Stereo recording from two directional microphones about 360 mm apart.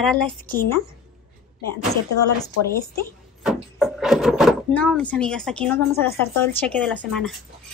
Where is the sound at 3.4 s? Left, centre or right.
Centre.